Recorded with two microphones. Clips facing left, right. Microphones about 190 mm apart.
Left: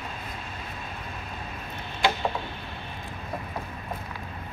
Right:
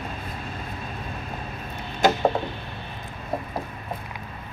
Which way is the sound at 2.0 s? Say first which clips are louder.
Right 5 dB; 45° right (ahead or behind).